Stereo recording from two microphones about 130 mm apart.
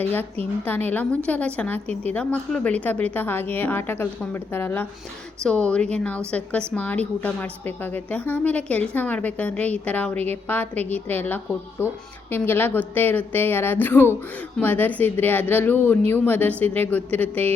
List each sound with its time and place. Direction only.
0.0 s a woman's voice: 15° left (ahead or behind)